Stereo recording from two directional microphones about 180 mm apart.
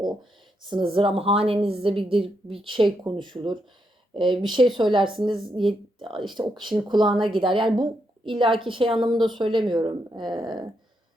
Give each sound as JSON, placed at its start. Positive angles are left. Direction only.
{"t": 0.7, "sound": "speech", "side_deg": -30}